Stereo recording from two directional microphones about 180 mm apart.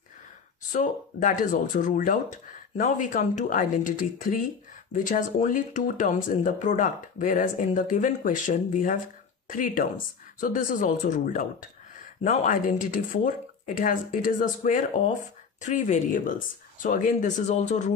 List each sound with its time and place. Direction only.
0.7 s speech: 45° left (ahead or behind)